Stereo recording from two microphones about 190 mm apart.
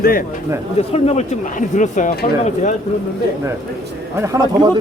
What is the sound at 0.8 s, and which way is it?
Speech, 35° left (ahead or behind).